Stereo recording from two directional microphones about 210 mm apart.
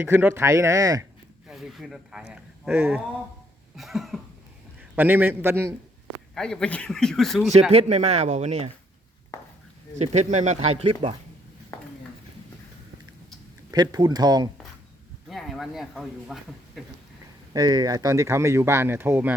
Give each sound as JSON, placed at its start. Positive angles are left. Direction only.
{"t": 0.0, "sound": "speech", "side_deg": -10}
{"t": 1.5, "sound": "speech", "side_deg": 0}
{"t": 3.8, "sound": "cough", "side_deg": 0}
{"t": 4.8, "sound": "a man's voice", "side_deg": -10}
{"t": 6.3, "sound": "speech", "side_deg": 5}
{"t": 7.7, "sound": "speech", "side_deg": -30}
{"t": 9.3, "sound": "a sound", "side_deg": 15}
{"t": 10.0, "sound": "speech", "side_deg": -35}
{"t": 13.7, "sound": "speech", "side_deg": -20}
{"t": 15.3, "sound": "speech", "side_deg": 0}
{"t": 17.5, "sound": "speech", "side_deg": -20}